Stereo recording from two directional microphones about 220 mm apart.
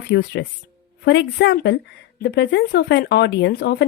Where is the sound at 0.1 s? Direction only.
50° left (ahead or behind).